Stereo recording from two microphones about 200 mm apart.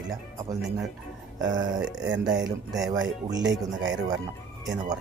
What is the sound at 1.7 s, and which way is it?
Speech, 5° right (ahead or behind).